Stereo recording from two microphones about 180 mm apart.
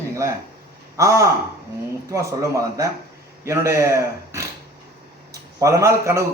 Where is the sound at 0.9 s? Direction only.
15° right (ahead or behind).